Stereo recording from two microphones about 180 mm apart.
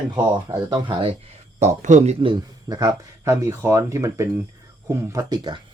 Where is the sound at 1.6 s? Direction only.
45° right (ahead or behind).